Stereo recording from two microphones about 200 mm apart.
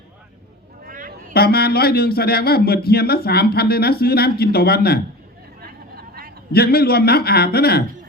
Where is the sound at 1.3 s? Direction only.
50° left (ahead or behind).